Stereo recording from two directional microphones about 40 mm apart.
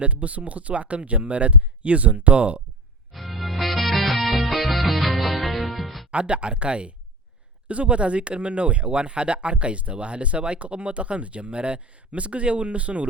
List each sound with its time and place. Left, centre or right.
0.0 s speech: right
3.1 s music: centre
6.1 s speech: right